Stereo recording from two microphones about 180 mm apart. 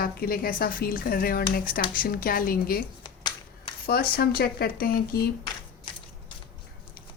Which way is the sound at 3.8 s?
60° left (ahead or behind).